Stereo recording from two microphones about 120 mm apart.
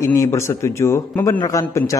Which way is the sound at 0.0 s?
25° left (ahead or behind).